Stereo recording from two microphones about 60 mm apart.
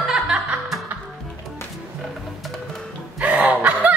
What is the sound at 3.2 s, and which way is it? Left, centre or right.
Fowl, right.